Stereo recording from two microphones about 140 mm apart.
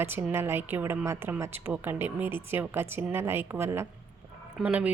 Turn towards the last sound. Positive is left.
turn(degrees=-10)  # may be behind; listen again after turning